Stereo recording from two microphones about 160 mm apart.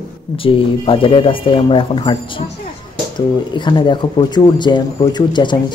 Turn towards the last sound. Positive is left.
turn(degrees=30)  # may be behind; listen again after turning